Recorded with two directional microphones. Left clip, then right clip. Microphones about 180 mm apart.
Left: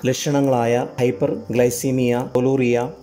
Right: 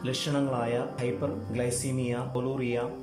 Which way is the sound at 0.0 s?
45° left (ahead or behind).